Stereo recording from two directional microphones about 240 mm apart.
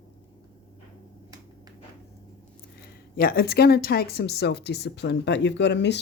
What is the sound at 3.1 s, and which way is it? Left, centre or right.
Speech, left.